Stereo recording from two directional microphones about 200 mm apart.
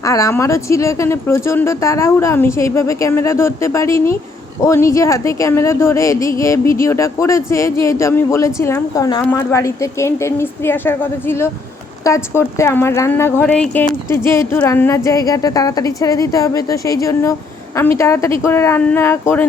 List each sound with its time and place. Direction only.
0.0 s speech: 15° left (ahead or behind)